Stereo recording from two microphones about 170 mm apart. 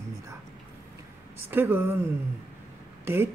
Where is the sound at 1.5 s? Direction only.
10° right (ahead or behind).